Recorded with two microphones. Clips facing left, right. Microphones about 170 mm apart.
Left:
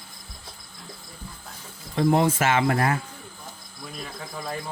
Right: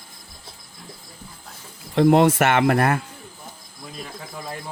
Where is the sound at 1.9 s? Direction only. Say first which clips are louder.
Right 5 dB; 65° right (ahead or behind).